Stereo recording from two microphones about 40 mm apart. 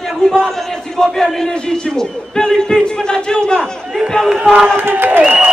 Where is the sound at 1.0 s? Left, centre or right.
Centre.